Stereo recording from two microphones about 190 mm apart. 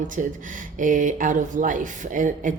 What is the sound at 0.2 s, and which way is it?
Speech, 45° right (ahead or behind).